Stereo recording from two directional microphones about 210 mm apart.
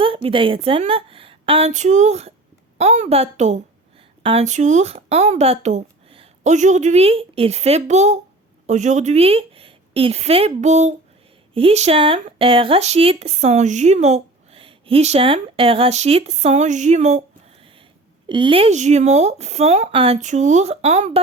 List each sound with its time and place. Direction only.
0.0 s a woman's voice: 25° right (ahead or behind)
18.3 s speech: 25° right (ahead or behind)